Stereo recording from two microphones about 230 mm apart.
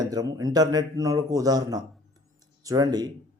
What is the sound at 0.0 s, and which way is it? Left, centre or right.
Speech, centre.